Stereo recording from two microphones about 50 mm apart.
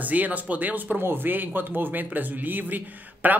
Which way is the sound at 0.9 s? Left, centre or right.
Right.